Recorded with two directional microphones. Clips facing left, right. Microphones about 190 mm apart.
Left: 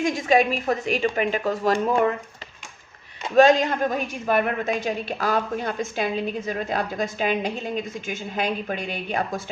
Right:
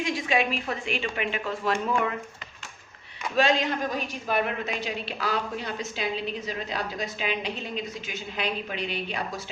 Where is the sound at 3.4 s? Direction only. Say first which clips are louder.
Left 8 dB; 45° left (ahead or behind).